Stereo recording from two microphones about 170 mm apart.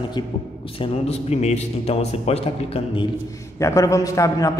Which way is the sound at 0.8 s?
35° left (ahead or behind).